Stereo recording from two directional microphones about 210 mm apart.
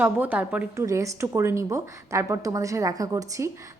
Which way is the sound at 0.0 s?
10° right (ahead or behind).